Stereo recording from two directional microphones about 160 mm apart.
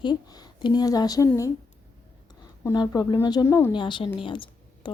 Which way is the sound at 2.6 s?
20° left (ahead or behind).